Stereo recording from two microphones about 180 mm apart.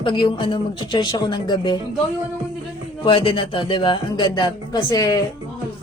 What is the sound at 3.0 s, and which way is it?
Speech, 30° left (ahead or behind).